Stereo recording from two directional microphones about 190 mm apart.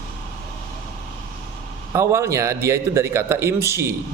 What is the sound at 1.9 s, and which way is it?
A man's voice, 15° right (ahead or behind).